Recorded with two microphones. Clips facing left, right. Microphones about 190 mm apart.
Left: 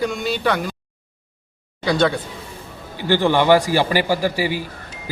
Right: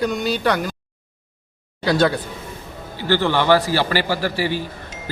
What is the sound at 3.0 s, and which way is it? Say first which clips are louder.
A man's voice: left 2 dB; 15° left (ahead or behind).